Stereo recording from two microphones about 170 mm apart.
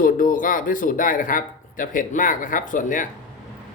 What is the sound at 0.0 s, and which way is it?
Speech, 55° left (ahead or behind).